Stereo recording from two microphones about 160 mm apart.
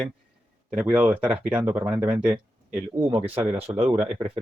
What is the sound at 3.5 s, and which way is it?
Speech, 40° right (ahead or behind).